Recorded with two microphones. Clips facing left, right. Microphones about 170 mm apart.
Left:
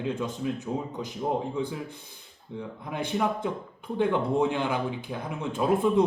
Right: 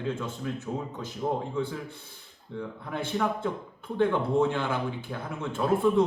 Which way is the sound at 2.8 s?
15° left (ahead or behind).